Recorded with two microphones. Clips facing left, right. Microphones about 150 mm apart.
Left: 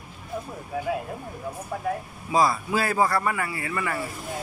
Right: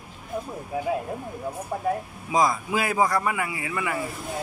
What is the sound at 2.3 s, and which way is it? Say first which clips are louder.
A man's voice: even; 15° right (ahead or behind).